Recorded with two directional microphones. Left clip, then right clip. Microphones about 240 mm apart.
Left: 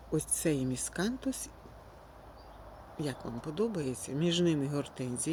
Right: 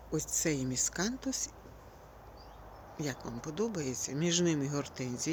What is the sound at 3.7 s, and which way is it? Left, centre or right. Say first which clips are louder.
Speech: left 1 dB; left.